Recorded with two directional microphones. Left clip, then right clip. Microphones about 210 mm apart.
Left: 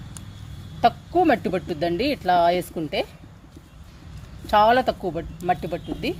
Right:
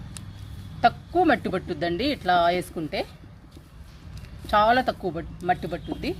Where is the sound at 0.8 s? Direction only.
20° left (ahead or behind).